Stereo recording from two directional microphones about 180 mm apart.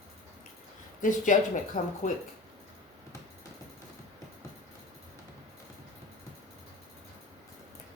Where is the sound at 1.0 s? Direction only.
45° left (ahead or behind).